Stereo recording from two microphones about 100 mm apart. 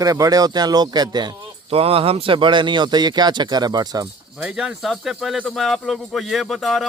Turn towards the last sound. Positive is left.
turn(degrees=0)  # may be behind; listen again after turning